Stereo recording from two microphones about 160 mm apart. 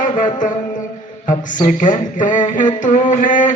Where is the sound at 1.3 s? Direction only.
55° left (ahead or behind).